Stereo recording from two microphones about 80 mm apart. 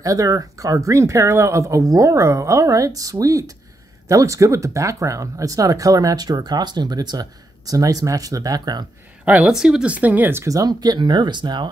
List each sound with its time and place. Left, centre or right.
0.0 s speech: right
9.2 s a woman's voice: centre
9.5 s speech: centre
9.9 s speech: right
10.4 s speech: right